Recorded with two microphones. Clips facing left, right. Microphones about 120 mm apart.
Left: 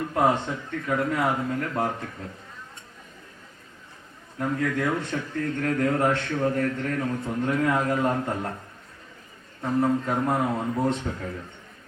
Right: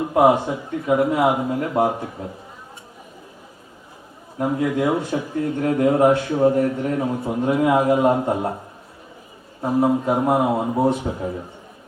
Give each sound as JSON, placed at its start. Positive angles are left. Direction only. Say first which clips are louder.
{"t": 0.0, "sound": "a man's voice", "louder": "right 7 dB", "side_deg": -20}
{"t": 4.4, "sound": "a man's voice", "louder": "right 5 dB", "side_deg": -20}
{"t": 9.6, "sound": "a man's voice", "louder": "right 5 dB", "side_deg": -20}